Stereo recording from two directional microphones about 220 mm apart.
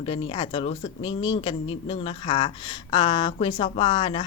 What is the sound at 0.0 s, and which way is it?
Speech, 25° left (ahead or behind).